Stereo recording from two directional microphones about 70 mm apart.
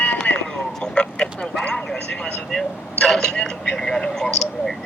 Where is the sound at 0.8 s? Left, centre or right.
Centre.